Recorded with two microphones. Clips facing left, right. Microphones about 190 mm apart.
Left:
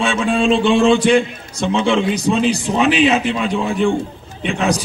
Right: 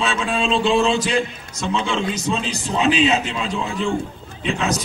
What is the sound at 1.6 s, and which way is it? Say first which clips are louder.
A man's voice: left 6 dB; 30° left (ahead or behind).